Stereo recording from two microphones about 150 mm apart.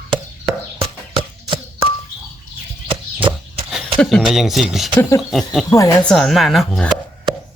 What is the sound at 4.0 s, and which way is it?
Speech, centre (ahead or behind).